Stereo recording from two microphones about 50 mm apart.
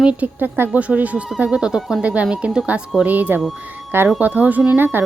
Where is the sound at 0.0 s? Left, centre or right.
Right.